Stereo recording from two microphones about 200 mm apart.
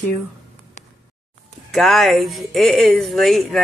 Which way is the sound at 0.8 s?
35° left (ahead or behind).